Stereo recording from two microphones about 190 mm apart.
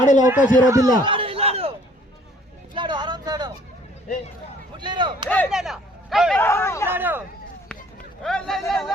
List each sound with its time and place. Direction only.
0.0 s speech: 40° left (ahead or behind)
0.3 s speech: 5° right (ahead or behind)
0.7 s a sound: 20° right (ahead or behind)
2.7 s speech: 25° right (ahead or behind)
4.8 s speech: 25° right (ahead or behind)
5.5 s speech: centre (ahead or behind)
6.4 s speech: 15° left (ahead or behind)
6.8 s speech: 10° right (ahead or behind)
8.2 s speech: centre (ahead or behind)